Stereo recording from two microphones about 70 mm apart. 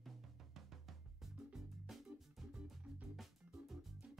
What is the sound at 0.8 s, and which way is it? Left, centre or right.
Music, centre.